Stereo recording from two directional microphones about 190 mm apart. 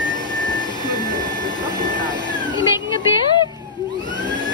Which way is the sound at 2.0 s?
25° left (ahead or behind).